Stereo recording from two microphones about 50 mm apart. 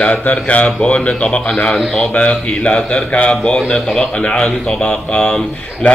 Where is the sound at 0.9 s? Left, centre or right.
Left.